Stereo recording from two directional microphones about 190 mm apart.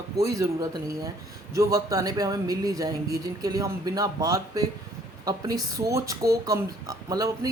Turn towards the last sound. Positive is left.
turn(degrees=-20)  # may be behind; listen again after turning